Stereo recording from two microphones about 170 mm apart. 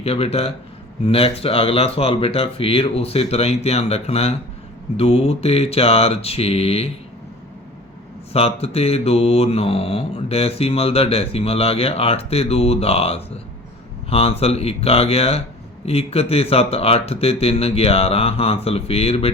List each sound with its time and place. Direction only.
0.0 s mantra: 35° left (ahead or behind)
8.3 s mantra: 35° left (ahead or behind)